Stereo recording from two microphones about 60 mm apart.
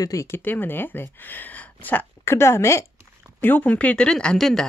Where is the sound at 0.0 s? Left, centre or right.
Left.